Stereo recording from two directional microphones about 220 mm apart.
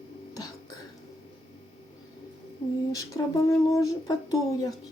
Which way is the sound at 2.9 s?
15° left (ahead or behind).